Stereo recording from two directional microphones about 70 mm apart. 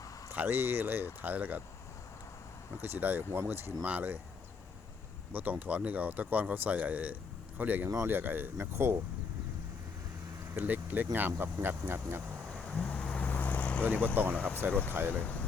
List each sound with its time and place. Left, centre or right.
0.3 s speech: right
2.8 s speech: right
5.3 s speech: right
10.5 s speech: right
13.0 s vehicle: centre
13.8 s speech: right
14.3 s speech: centre